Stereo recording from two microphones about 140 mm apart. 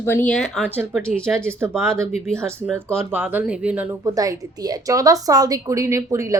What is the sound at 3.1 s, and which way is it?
Speech, 15° right (ahead or behind).